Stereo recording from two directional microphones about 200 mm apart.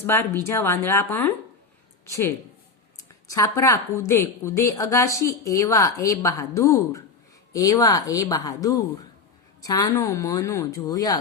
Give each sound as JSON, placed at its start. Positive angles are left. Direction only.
{"t": 0.0, "sound": "a woman's voice", "side_deg": 10}
{"t": 3.2, "sound": "a woman's voice", "side_deg": 15}